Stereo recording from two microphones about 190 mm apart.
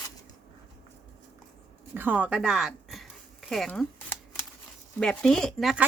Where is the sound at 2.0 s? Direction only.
10° right (ahead or behind).